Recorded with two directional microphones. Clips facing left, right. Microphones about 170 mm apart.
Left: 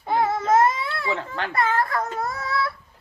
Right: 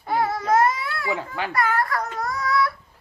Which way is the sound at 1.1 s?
10° right (ahead or behind).